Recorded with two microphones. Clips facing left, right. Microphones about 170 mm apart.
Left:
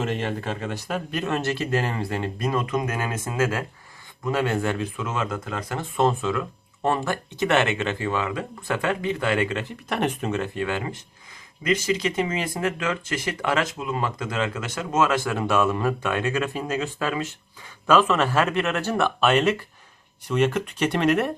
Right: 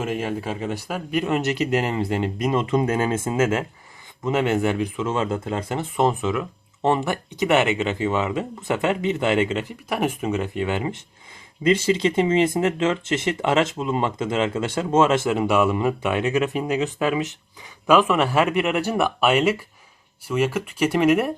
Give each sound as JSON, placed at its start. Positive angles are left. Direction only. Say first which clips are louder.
{"t": 0.0, "sound": "speech", "louder": "right 1 dB", "side_deg": -5}
{"t": 5.0, "sound": "speech", "louder": "right 5 dB", "side_deg": -30}
{"t": 11.6, "sound": "speech", "louder": "right 4 dB", "side_deg": -30}